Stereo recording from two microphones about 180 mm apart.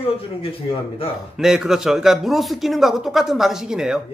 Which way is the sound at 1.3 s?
5° right (ahead or behind).